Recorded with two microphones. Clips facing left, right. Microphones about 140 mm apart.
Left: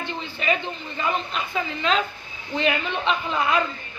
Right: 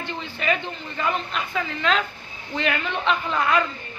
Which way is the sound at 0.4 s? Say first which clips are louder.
Even; 15° left (ahead or behind).